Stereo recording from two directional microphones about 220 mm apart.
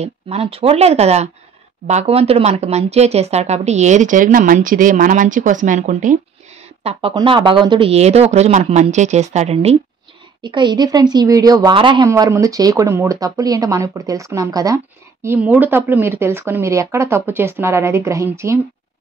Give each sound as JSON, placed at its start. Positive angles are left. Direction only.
{"t": 0.0, "sound": "speech", "side_deg": -25}
{"t": 6.8, "sound": "a woman's voice", "side_deg": -25}